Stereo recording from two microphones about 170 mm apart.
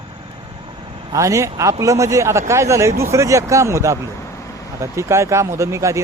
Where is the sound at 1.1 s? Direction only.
20° right (ahead or behind).